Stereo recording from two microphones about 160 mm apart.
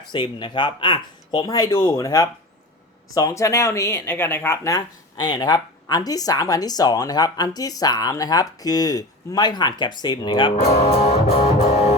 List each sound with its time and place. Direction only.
0.1 s speech: 30° left (ahead or behind)
10.6 s music: 45° left (ahead or behind)